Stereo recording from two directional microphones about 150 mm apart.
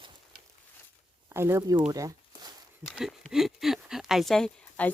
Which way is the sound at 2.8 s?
Centre (ahead or behind).